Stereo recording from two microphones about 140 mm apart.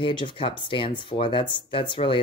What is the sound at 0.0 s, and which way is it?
Speech, 35° left (ahead or behind).